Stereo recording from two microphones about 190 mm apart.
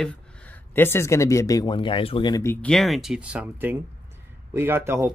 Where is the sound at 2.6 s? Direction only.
Centre (ahead or behind).